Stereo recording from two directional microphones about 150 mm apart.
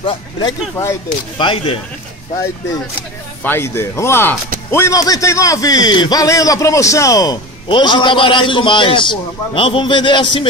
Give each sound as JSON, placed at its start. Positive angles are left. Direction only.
{"t": 0.0, "sound": "a man's voice", "side_deg": 25}
{"t": 1.4, "sound": "a man's voice", "side_deg": 35}
{"t": 3.4, "sound": "a man's voice", "side_deg": 15}